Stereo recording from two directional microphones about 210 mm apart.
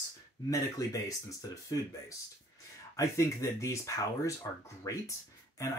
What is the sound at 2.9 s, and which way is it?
Speech, 15° left (ahead or behind).